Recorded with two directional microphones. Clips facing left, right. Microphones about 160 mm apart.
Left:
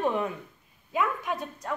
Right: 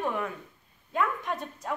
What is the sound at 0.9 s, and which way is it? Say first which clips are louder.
Speech: left 1 dB; 5° left (ahead or behind).